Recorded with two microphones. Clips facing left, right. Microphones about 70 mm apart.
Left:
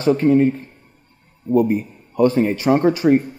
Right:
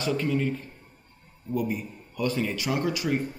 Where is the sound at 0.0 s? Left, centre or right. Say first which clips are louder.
Left 12 dB; left.